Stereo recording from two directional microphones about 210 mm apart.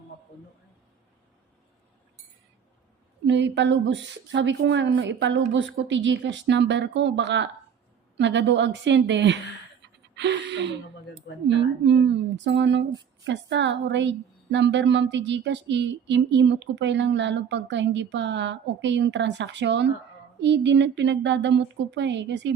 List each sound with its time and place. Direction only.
3.2 s a woman's voice: 60° right (ahead or behind)